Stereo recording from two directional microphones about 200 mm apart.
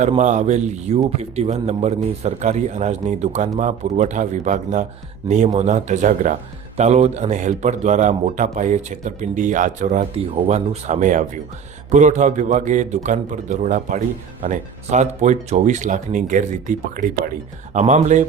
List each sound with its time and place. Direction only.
0.2 s a man's voice: 35° right (ahead or behind)